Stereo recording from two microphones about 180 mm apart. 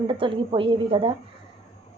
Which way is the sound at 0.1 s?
30° right (ahead or behind).